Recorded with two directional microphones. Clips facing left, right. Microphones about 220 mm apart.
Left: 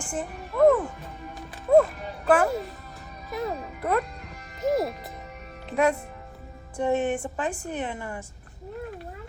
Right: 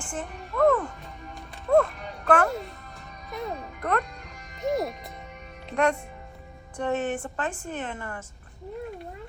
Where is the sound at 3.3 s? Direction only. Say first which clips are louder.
Left 3 dB; 5° left (ahead or behind).